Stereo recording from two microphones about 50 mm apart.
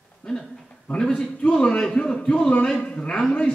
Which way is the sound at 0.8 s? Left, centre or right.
Centre.